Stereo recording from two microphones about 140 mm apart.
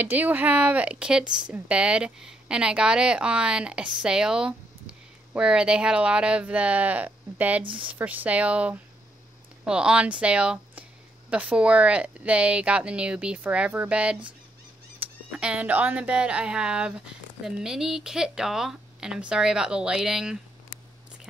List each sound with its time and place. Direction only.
0.0 s speech: 10° right (ahead or behind)
7.6 s a woman's voice: 35° right (ahead or behind)
7.9 s speech: 10° right (ahead or behind)